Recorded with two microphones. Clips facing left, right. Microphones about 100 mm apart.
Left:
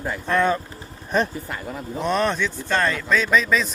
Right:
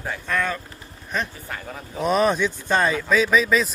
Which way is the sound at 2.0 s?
5° right (ahead or behind).